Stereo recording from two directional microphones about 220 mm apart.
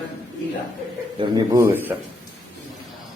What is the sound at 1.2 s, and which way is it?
Speech, 15° right (ahead or behind).